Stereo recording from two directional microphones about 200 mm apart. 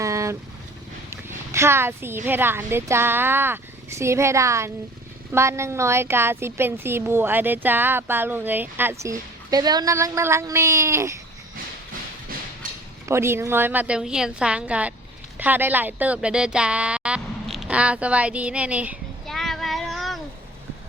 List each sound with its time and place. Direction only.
0.0 s vehicle: 15° right (ahead or behind)
1.5 s speech: 10° right (ahead or behind)
12.6 s a sound: 40° right (ahead or behind)
13.1 s speech: 15° right (ahead or behind)